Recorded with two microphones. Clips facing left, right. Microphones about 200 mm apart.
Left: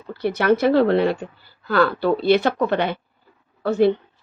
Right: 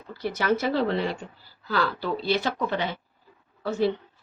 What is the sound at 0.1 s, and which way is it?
Speech, 60° left (ahead or behind).